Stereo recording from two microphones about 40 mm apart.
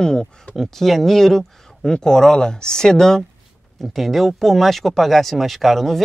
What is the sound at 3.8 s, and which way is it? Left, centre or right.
Speech, centre.